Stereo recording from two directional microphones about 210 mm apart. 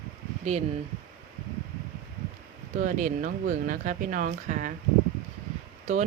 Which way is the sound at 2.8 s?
35° right (ahead or behind).